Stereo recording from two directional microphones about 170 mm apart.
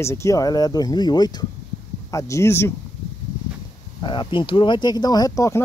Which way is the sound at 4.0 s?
30° left (ahead or behind).